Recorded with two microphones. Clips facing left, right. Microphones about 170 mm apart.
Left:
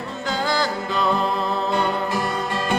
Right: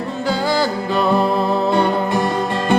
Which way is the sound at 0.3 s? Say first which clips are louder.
Right 5 dB; 10° right (ahead or behind).